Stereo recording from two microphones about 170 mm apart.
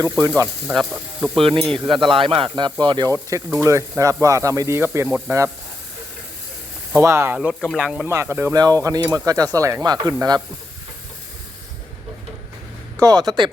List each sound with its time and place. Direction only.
0.0 s speech: 20° right (ahead or behind)
0.7 s speech: centre (ahead or behind)
1.4 s speech: 30° right (ahead or behind); by 5.5 s 15° right (ahead or behind)
6.9 s speech: 15° right (ahead or behind)
7.3 s speech: centre (ahead or behind)
8.1 s speech: 15° right (ahead or behind)
13.0 s speech: 25° right (ahead or behind)